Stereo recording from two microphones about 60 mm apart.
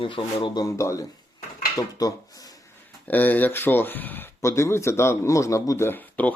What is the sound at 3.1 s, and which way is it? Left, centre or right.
Speech, left.